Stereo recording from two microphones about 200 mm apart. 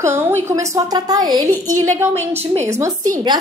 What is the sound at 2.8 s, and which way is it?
Speech, 15° right (ahead or behind).